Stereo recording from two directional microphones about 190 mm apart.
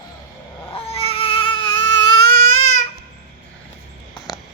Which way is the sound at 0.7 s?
30° left (ahead or behind).